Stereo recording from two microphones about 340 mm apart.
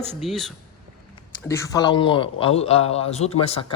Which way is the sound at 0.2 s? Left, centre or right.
Centre.